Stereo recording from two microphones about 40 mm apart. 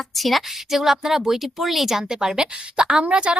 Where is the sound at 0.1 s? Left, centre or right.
Centre.